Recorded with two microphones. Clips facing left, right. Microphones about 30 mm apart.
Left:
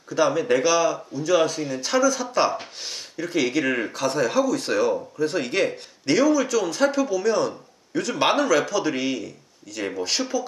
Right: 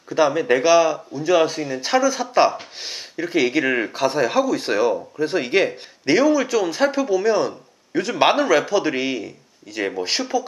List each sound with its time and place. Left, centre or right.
0.1 s speech: centre